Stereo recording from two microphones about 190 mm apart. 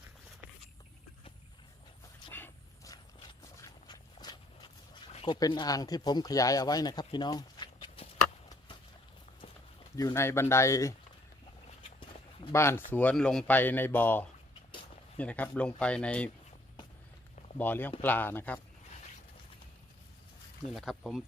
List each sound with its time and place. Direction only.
2.3 s a sound: 15° left (ahead or behind)
5.1 s speech: 25° left (ahead or behind)
8.4 s a sound: 25° left (ahead or behind)
10.0 s speech: 15° left (ahead or behind)
12.5 s speech: 15° left (ahead or behind)
17.6 s speech: 10° left (ahead or behind)
20.7 s speech: centre (ahead or behind)